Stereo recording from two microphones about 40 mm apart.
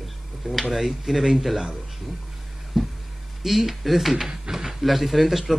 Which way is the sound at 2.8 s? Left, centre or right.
Centre.